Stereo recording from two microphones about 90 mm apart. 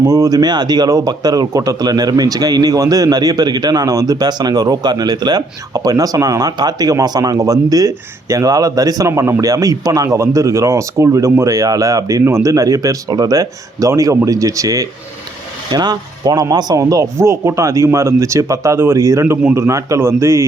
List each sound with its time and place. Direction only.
0.0 s speech: 45° right (ahead or behind)
15.7 s speech: 50° right (ahead or behind); by 20.5 s 30° right (ahead or behind)